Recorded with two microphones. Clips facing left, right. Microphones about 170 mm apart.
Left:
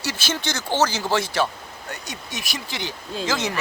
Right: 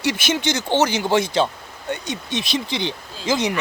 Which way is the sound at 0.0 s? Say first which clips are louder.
Right 6 dB; 15° right (ahead or behind).